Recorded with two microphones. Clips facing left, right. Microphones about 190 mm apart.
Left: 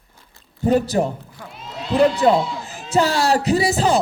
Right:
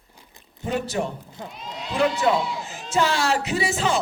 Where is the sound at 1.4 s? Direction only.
20° right (ahead or behind).